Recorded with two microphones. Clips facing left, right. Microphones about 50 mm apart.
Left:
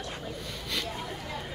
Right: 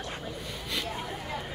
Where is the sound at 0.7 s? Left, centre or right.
Centre.